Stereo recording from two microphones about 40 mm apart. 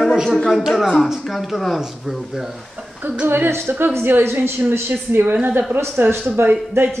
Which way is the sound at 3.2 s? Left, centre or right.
Right.